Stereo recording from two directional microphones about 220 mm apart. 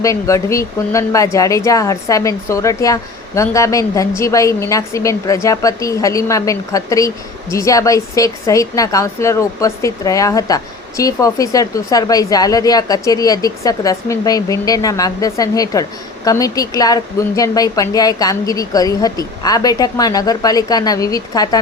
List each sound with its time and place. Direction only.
0.0 s a woman's voice: 15° left (ahead or behind)